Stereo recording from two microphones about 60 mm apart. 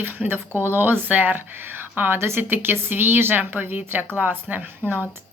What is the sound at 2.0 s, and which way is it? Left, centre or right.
Speech, right.